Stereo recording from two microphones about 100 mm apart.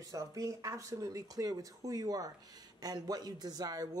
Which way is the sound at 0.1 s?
35° right (ahead or behind).